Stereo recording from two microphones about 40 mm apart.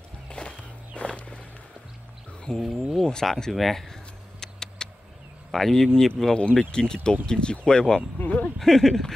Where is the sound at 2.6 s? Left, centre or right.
Centre.